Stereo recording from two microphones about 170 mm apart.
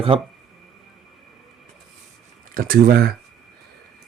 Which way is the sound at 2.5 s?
60° right (ahead or behind).